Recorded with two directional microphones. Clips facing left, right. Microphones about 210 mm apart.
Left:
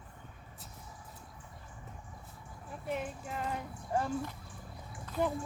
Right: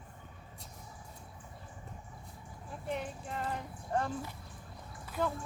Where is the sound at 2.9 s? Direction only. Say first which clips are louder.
Left 1 dB; 5° left (ahead or behind).